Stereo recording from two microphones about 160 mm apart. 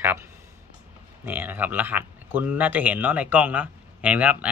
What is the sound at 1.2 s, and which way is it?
Speech, 10° right (ahead or behind).